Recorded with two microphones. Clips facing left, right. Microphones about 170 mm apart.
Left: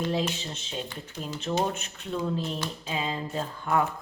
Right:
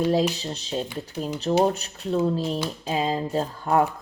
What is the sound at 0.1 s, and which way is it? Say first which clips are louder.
Speech: right 6 dB; 35° right (ahead or behind).